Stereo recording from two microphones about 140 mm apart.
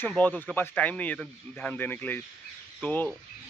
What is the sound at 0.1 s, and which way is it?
Speech, 10° left (ahead or behind).